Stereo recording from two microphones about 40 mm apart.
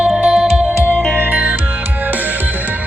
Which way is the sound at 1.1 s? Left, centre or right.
Right.